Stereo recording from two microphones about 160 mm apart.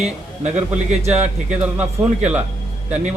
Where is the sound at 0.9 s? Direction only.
40° right (ahead or behind).